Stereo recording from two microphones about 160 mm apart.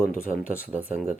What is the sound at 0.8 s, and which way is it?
Speech, 10° right (ahead or behind).